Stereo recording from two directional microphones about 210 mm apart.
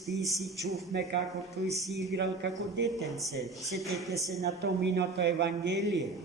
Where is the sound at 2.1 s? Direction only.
55° right (ahead or behind).